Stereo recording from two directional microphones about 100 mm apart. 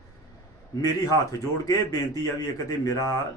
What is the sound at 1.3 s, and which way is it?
Speech, 35° left (ahead or behind).